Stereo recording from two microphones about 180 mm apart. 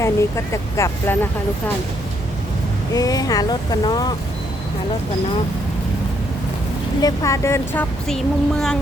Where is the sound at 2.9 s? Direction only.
20° left (ahead or behind).